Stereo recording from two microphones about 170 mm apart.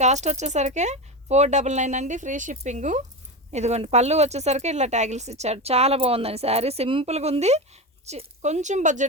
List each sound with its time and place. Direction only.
0.0 s speech: 40° right (ahead or behind)